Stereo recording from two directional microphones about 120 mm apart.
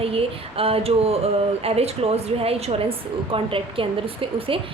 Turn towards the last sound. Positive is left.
turn(degrees=-50)  # may be behind; listen again after turning